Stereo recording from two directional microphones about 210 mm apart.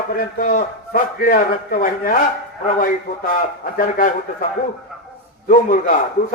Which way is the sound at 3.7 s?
40° left (ahead or behind).